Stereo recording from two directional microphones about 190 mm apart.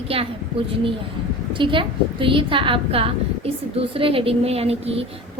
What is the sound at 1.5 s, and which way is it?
A woman's voice, 25° right (ahead or behind).